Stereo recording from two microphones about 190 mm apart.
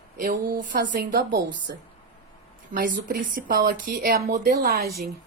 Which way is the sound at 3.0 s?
50° right (ahead or behind).